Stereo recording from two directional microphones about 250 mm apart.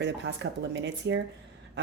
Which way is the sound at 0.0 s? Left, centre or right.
Right.